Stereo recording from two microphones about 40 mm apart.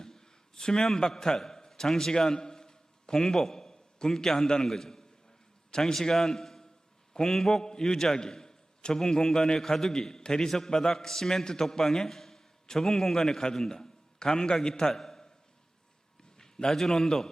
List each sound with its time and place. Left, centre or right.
0.0 s a sound: centre
0.9 s a man's voice: centre
16.4 s a man's voice: centre